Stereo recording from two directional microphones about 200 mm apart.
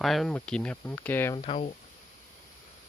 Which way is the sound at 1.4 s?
30° left (ahead or behind).